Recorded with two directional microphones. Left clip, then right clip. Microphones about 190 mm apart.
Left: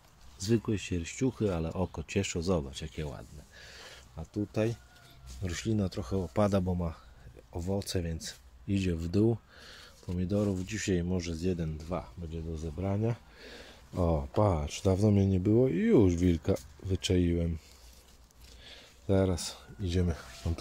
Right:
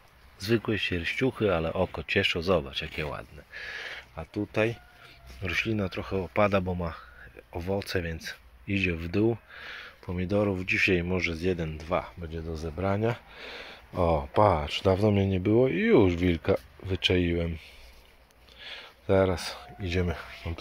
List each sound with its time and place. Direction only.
0.4 s speech: 10° left (ahead or behind)
3.1 s speech: 5° right (ahead or behind)
4.5 s speech: 10° left (ahead or behind)
5.4 s speech: 20° left (ahead or behind)
10.1 s speech: centre (ahead or behind)
13.4 s speech: 20° left (ahead or behind)